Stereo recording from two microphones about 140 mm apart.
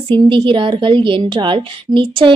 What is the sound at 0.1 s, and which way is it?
A woman's voice, 35° right (ahead or behind).